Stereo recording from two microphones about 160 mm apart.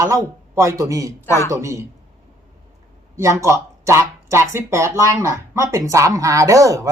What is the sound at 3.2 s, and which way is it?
Speech, 20° right (ahead or behind).